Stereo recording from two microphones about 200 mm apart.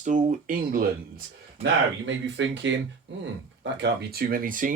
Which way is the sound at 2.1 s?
65° right (ahead or behind).